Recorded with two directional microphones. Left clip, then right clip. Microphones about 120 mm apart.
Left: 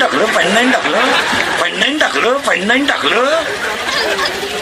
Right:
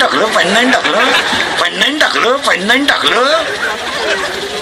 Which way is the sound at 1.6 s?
30° right (ahead or behind).